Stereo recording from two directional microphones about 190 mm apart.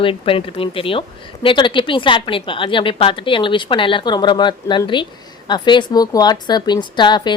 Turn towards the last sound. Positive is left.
turn(degrees=25)  # may be behind; listen again after turning